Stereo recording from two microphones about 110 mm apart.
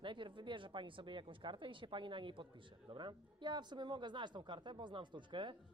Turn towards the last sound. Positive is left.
turn(degrees=-45)  # may be behind; listen again after turning